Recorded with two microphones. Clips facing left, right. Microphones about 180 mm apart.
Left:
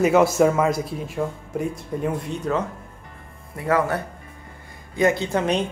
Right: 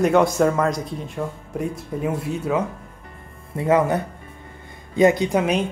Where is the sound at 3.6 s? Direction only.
20° right (ahead or behind).